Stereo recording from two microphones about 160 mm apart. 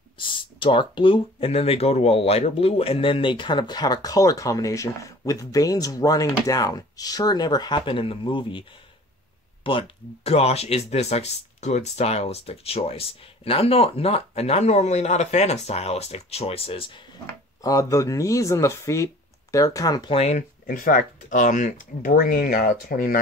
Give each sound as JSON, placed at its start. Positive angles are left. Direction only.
{"t": 0.2, "sound": "speech", "side_deg": 30}
{"t": 17.6, "sound": "speech", "side_deg": 20}
{"t": 20.2, "sound": "speech", "side_deg": 45}